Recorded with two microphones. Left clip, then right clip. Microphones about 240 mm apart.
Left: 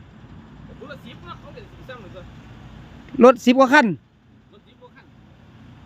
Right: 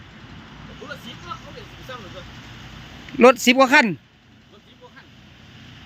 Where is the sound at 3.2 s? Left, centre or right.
Centre.